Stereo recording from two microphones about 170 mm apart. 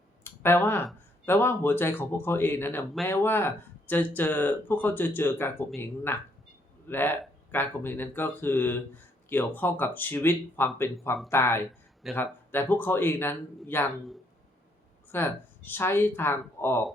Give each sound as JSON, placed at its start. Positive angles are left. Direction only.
{"t": 0.3, "sound": "speech", "side_deg": 15}
{"t": 15.1, "sound": "speech", "side_deg": 10}